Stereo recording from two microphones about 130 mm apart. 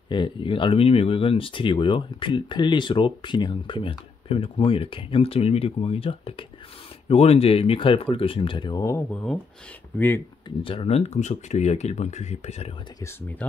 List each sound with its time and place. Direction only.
0.1 s speech: 40° left (ahead or behind)
8.8 s speech: 20° left (ahead or behind)
10.6 s speech: 45° left (ahead or behind)
13.0 s speech: 15° left (ahead or behind)